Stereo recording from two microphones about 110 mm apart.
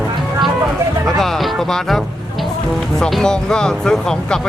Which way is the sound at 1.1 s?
Centre (ahead or behind).